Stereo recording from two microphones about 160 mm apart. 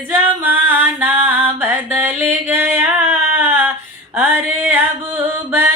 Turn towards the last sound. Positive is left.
turn(degrees=-15)  # may be behind; listen again after turning